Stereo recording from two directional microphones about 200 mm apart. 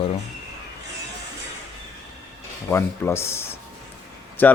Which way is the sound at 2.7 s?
10° left (ahead or behind).